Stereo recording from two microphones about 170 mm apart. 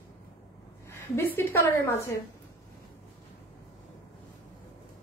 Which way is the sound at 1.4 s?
15° left (ahead or behind).